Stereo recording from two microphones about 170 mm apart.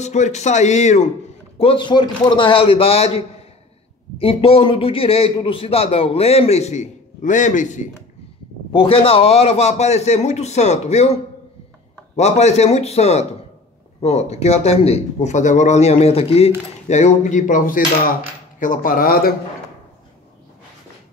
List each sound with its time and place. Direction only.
0.0 s speech: 40° left (ahead or behind)
1.6 s a man's voice: 30° left (ahead or behind)
4.2 s a man's voice: 35° left (ahead or behind)
8.7 s a man's voice: 35° left (ahead or behind)
12.2 s a man's voice: 40° left (ahead or behind); by 19.3 s 60° left (ahead or behind)